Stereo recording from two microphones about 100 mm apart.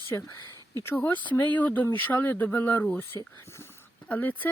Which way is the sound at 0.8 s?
25° left (ahead or behind).